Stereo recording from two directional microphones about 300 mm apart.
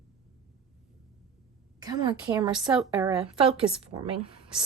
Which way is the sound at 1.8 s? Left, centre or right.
Centre.